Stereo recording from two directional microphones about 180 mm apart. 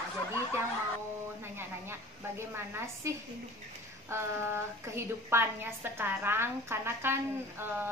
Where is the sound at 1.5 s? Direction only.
15° right (ahead or behind).